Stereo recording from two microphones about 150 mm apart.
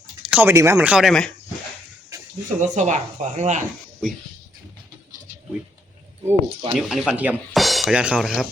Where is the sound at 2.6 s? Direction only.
55° right (ahead or behind).